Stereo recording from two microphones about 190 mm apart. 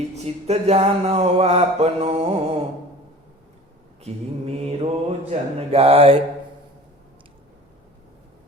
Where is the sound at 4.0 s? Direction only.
35° right (ahead or behind).